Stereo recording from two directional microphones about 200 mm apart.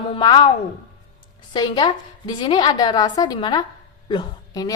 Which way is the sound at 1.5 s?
20° left (ahead or behind).